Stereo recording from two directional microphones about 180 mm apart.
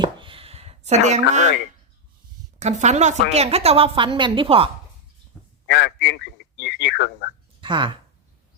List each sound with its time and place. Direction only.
0.0 s a sound: 30° right (ahead or behind)
2.6 s a woman's voice: 40° right (ahead or behind)
5.6 s speech: 70° left (ahead or behind)
7.6 s speech: 25° right (ahead or behind)